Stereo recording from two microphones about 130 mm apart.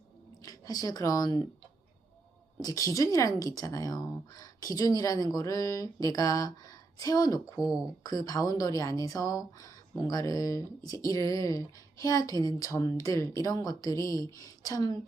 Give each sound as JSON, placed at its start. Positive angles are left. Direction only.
{"t": 0.4, "sound": "speech", "side_deg": 30}
{"t": 2.6, "sound": "a woman's voice", "side_deg": 25}